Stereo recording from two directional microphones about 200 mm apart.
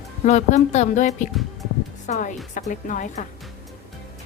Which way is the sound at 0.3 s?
35° left (ahead or behind).